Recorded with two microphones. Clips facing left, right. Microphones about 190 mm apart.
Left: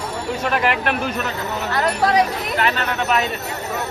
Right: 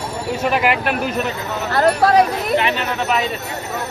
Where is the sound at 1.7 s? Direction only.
35° right (ahead or behind).